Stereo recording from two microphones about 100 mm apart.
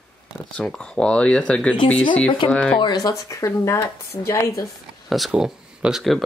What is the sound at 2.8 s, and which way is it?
Speech, 45° left (ahead or behind).